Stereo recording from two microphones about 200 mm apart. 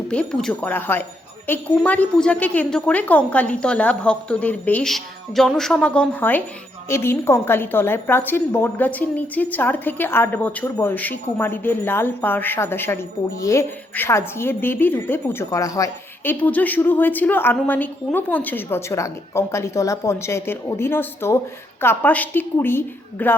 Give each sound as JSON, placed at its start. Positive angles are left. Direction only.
{"t": 0.1, "sound": "a woman's voice", "side_deg": 5}